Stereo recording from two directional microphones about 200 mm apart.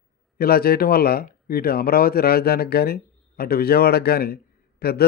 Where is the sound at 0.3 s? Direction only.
50° left (ahead or behind).